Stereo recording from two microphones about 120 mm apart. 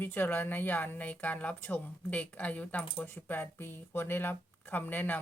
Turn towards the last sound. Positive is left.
turn(degrees=15)  # may be behind; listen again after turning